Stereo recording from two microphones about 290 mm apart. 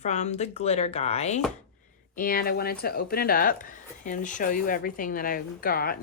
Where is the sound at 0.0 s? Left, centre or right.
Left.